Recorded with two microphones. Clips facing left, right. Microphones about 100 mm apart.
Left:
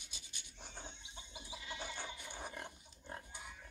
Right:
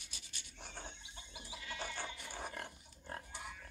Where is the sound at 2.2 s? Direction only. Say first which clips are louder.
Right 2 dB; centre (ahead or behind).